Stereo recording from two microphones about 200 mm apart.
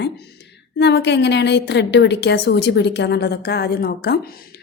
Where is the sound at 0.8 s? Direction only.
60° left (ahead or behind).